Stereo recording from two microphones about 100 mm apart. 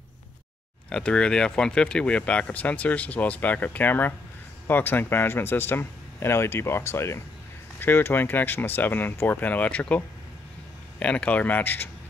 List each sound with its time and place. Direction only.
0.8 s a man's voice: 10° left (ahead or behind)